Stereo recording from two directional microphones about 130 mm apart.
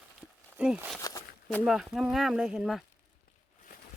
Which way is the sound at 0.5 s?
10° right (ahead or behind).